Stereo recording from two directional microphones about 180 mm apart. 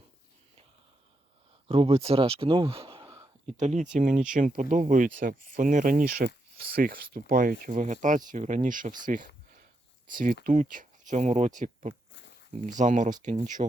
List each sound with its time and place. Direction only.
1.6 s speech: 30° right (ahead or behind)
3.4 s speech: 40° right (ahead or behind)